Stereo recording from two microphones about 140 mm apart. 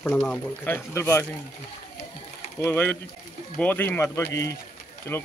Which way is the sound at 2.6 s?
15° left (ahead or behind).